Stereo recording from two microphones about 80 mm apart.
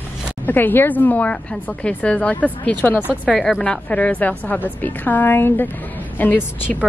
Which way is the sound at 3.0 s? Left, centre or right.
Centre.